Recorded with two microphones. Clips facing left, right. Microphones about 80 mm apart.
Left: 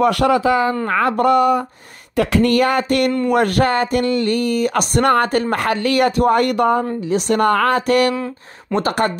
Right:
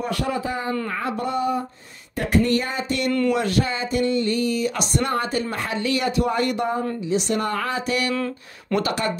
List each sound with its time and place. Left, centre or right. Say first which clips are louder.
0.0 s speech: left 11 dB; left
2.1 s a sound: left 5 dB; left
8.7 s speech: left 5 dB; left